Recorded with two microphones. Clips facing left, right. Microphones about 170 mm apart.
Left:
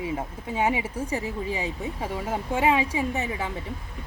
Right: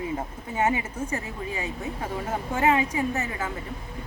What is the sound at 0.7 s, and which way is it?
Speech, 10° left (ahead or behind).